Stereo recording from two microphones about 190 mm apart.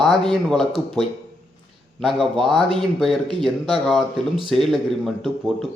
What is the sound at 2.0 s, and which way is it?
Speech, 25° right (ahead or behind).